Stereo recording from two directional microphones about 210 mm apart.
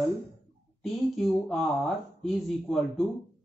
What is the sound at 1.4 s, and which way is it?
Speech, centre (ahead or behind).